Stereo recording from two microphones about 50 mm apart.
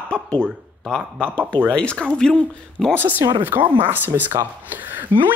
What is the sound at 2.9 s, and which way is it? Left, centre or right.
Speech, right.